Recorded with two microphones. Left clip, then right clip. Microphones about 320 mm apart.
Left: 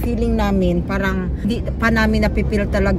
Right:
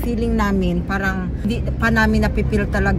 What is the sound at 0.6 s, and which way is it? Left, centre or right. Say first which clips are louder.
Speech: left 2 dB; centre.